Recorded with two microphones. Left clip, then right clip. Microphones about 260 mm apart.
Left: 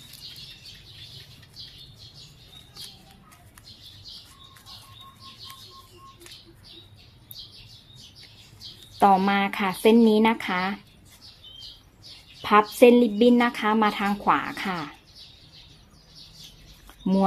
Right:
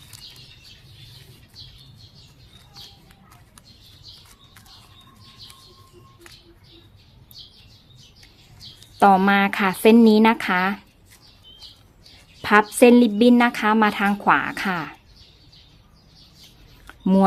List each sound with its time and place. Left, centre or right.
9.0 s speech: right
12.4 s speech: right
16.8 s a sound: right